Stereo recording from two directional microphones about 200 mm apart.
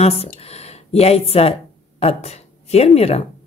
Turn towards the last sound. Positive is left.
turn(degrees=30)  # may be behind; listen again after turning